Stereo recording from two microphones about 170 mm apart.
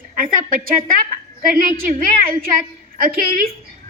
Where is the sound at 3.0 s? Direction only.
60° right (ahead or behind).